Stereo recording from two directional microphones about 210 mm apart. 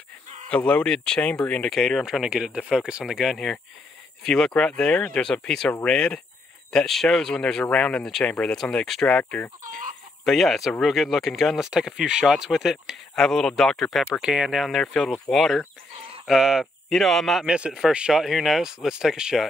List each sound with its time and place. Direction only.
0.5 s speech: 5° left (ahead or behind)
9.6 s speech: 40° right (ahead or behind)
10.2 s speech: centre (ahead or behind)